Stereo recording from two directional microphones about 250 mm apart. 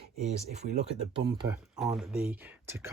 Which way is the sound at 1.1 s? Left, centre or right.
Centre.